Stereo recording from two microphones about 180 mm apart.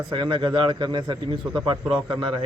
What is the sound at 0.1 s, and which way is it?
A man's voice, 25° right (ahead or behind).